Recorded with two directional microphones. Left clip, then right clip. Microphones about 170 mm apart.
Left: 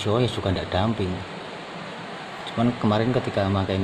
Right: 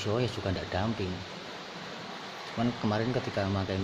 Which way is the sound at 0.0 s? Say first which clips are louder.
Left 8 dB; 10° left (ahead or behind).